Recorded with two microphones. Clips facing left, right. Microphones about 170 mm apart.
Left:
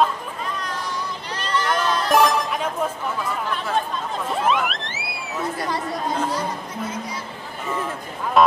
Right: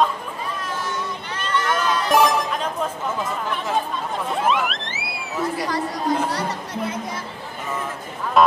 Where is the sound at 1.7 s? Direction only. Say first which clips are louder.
Even; centre (ahead or behind).